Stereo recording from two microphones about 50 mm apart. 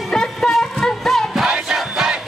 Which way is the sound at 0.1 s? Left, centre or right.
Centre.